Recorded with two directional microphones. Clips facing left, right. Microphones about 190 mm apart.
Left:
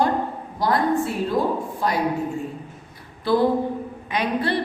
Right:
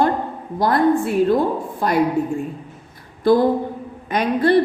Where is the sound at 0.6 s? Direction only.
55° right (ahead or behind).